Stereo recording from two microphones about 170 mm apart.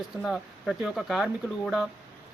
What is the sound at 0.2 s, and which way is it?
A man's voice, centre (ahead or behind).